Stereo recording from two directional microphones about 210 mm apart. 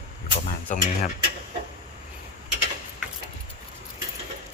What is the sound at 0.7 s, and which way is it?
Speech, 35° left (ahead or behind).